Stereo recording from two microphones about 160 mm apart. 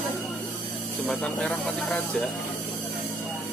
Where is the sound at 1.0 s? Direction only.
5° left (ahead or behind).